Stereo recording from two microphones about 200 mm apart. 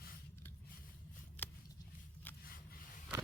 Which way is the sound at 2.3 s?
10° left (ahead or behind).